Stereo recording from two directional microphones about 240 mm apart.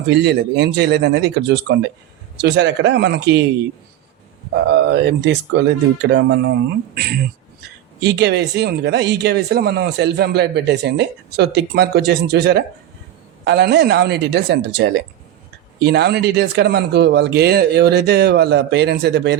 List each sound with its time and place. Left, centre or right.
0.1 s speech: right
4.5 s speech: right